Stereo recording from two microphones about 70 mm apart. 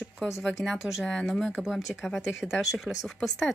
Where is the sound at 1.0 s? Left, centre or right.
Centre.